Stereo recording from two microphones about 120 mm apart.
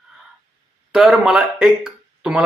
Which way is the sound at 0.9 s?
5° right (ahead or behind).